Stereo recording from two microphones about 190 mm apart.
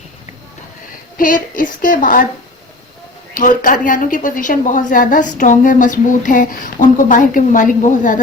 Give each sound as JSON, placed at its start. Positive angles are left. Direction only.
{"t": 1.1, "sound": "a woman's voice", "side_deg": 45}
{"t": 3.3, "sound": "a woman's voice", "side_deg": 45}